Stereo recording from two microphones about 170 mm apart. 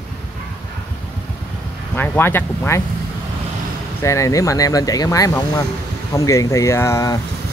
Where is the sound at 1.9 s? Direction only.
10° left (ahead or behind).